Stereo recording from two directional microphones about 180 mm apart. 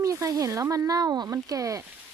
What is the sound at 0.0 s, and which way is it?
Speech, 20° right (ahead or behind).